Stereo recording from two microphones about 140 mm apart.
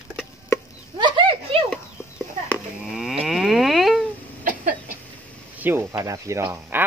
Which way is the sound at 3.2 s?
Centre (ahead or behind).